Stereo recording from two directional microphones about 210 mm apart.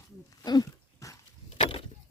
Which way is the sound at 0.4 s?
20° left (ahead or behind).